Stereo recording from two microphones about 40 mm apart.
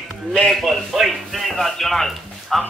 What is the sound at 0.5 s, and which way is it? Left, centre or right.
Speech, centre.